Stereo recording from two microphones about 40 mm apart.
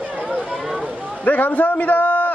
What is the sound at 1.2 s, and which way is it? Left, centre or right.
A man's voice, left.